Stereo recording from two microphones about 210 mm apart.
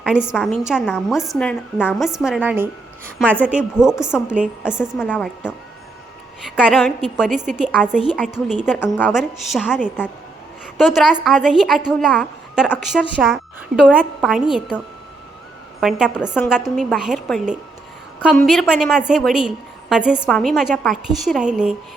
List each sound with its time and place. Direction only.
0.0 s a woman's voice: 5° right (ahead or behind)
4.9 s a woman's voice: 5° left (ahead or behind)
6.4 s a woman's voice: centre (ahead or behind)
8.6 s a woman's voice: 10° left (ahead or behind)
15.8 s a woman's voice: centre (ahead or behind)